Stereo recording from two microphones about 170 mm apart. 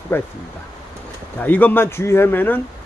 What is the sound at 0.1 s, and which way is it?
Speech, 15° left (ahead or behind).